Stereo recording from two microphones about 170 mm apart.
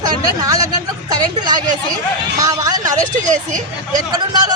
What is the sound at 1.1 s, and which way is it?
A man's voice, 25° right (ahead or behind).